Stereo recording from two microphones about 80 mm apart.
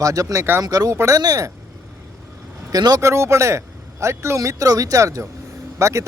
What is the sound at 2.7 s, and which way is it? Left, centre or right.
Speech, right.